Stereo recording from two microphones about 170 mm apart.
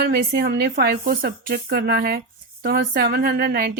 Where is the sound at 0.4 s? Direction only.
65° right (ahead or behind).